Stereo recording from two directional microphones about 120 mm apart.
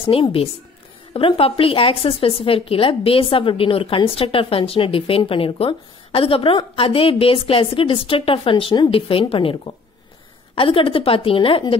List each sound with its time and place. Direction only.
0.0 s a woman's voice: 50° left (ahead or behind)